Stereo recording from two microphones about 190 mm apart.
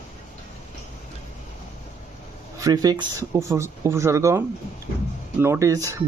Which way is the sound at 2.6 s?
20° right (ahead or behind).